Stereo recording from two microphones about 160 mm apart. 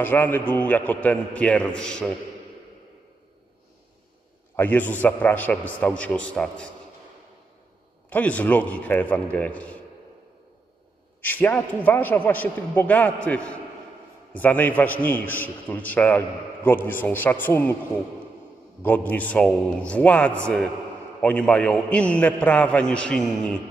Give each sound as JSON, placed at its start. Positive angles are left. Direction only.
{"t": 0.0, "sound": "a man's voice", "side_deg": 10}
{"t": 4.6, "sound": "a man's voice", "side_deg": 10}
{"t": 8.1, "sound": "a man's voice", "side_deg": 10}
{"t": 11.1, "sound": "a man's voice", "side_deg": 10}
{"t": 18.8, "sound": "a man's voice", "side_deg": 10}